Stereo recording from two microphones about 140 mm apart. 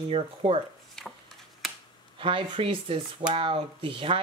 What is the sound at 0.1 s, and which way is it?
Speech, 45° right (ahead or behind).